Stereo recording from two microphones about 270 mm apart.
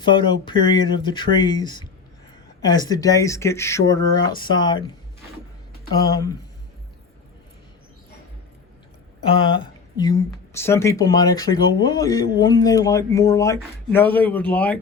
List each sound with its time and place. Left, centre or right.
0.0 s speech: centre
6.1 s speech: centre
9.3 s speech: centre